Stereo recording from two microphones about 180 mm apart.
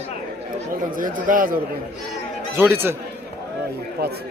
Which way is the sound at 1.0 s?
50° right (ahead or behind).